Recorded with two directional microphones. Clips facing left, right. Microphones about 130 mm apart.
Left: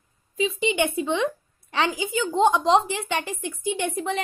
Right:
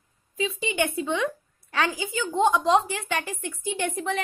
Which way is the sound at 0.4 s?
20° left (ahead or behind).